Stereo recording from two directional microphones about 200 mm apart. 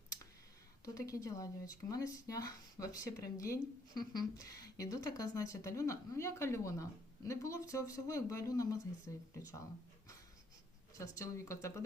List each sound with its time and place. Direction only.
0.9 s speech: 15° left (ahead or behind)
10.9 s speech: 15° left (ahead or behind)